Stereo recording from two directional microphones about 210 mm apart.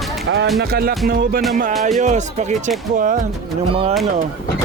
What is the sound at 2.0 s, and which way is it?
Music, 35° right (ahead or behind).